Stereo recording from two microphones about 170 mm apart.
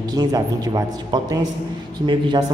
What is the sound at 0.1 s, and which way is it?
A woman's voice, 20° right (ahead or behind).